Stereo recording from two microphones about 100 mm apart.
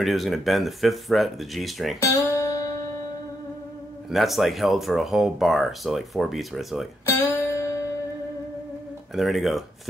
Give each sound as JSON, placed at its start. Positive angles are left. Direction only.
{"t": 0.0, "sound": "speech", "side_deg": 0}
{"t": 2.0, "sound": "guitar", "side_deg": 30}
{"t": 4.1, "sound": "speech", "side_deg": 0}
{"t": 7.1, "sound": "music", "side_deg": 30}
{"t": 9.1, "sound": "speech", "side_deg": 0}